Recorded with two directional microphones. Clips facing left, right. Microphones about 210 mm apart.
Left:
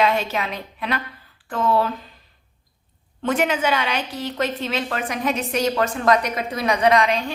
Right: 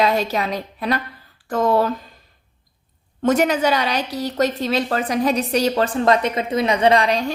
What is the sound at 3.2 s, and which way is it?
A woman's voice, 40° right (ahead or behind).